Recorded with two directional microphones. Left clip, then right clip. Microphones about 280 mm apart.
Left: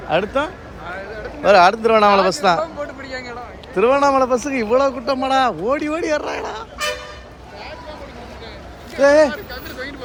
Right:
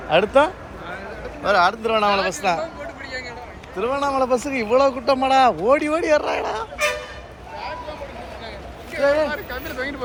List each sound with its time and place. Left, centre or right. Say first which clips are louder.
0.1 s speech: right 3 dB; centre
1.5 s a man's voice: left 6 dB; centre
3.8 s a man's voice: left 7 dB; centre
9.0 s speech: left 6 dB; centre
9.3 s a sound: right 2 dB; centre